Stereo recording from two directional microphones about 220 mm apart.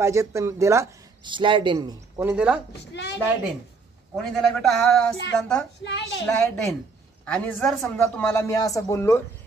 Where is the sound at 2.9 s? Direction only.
50° left (ahead or behind).